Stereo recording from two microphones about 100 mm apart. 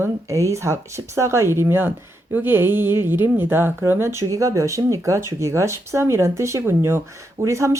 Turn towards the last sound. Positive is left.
turn(degrees=-30)  # may be behind; listen again after turning